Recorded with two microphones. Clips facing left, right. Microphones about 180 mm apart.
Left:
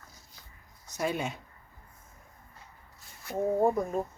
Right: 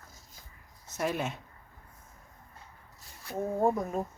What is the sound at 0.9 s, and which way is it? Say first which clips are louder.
Speech: even; centre (ahead or behind).